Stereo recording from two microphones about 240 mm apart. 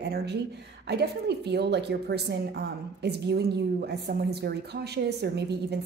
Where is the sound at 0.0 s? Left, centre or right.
Right.